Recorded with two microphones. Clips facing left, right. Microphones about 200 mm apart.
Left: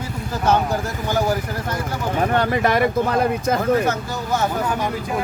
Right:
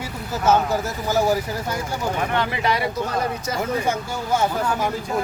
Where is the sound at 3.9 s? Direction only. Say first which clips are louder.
Even; 10° right (ahead or behind).